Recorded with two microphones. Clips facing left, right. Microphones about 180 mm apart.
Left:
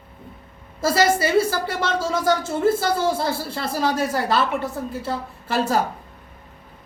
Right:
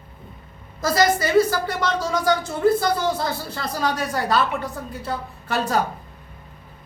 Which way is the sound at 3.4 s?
25° left (ahead or behind).